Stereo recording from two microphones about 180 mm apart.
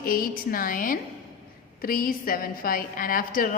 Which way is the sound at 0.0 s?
50° left (ahead or behind).